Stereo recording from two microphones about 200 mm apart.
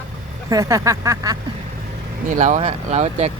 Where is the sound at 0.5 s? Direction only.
15° right (ahead or behind).